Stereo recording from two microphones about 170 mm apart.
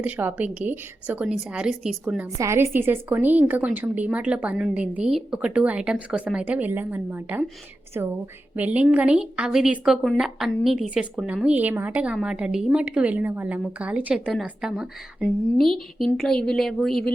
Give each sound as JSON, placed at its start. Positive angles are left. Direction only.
{"t": 0.0, "sound": "a woman's voice", "side_deg": -10}
{"t": 2.4, "sound": "a woman's voice", "side_deg": -15}